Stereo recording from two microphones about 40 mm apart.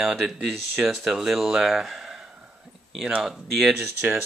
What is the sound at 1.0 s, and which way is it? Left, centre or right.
Speech, centre.